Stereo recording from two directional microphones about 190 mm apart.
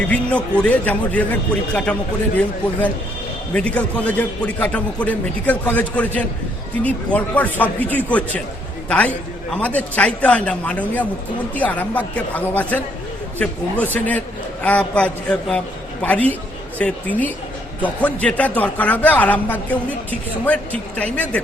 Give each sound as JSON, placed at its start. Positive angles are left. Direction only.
{"t": 0.1, "sound": "a man's voice", "side_deg": 5}
{"t": 3.5, "sound": "a man's voice", "side_deg": 5}